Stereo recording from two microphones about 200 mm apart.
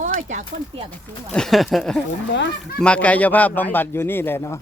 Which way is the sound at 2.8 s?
5° left (ahead or behind).